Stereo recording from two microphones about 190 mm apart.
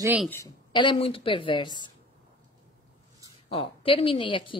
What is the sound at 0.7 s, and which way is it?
A woman's voice, 30° left (ahead or behind).